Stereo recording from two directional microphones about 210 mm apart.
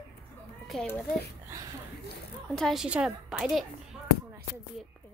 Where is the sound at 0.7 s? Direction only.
5° left (ahead or behind).